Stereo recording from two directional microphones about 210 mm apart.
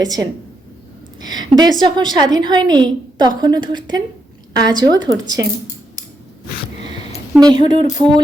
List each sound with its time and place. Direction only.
1.2 s a woman's voice: 20° right (ahead or behind)
7.3 s a woman's voice: 20° right (ahead or behind)